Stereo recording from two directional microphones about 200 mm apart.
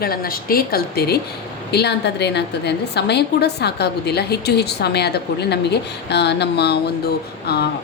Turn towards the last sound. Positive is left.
turn(degrees=55)  # may be behind; listen again after turning